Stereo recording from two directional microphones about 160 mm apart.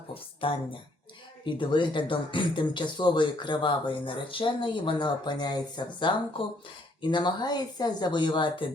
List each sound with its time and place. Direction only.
0.1 s speech: 35° left (ahead or behind)